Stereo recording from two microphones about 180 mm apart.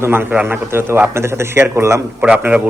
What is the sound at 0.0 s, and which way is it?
A man's voice, 10° right (ahead or behind).